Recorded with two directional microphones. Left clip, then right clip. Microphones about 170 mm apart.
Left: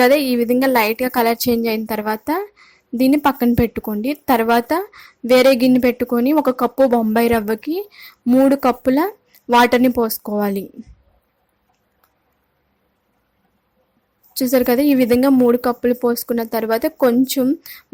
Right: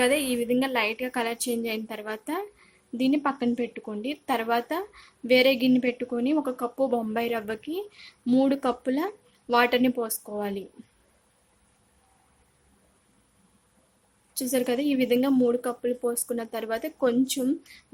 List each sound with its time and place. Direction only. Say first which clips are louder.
0.0 s speech: left 10 dB; 50° left (ahead or behind)
14.3 s speech: left 11 dB; 45° left (ahead or behind)